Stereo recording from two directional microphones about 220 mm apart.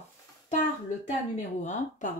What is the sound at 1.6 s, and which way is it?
Speech, 35° left (ahead or behind).